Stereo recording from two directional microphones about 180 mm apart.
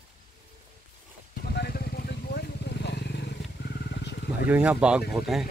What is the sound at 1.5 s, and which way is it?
Vehicle, 60° left (ahead or behind).